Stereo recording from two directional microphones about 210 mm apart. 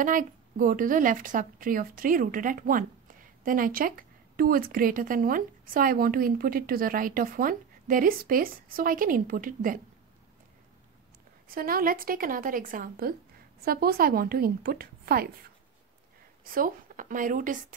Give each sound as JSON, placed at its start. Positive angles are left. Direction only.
{"t": 0.0, "sound": "speech", "side_deg": -40}
{"t": 11.4, "sound": "speech", "side_deg": -45}
{"t": 16.5, "sound": "speech", "side_deg": -40}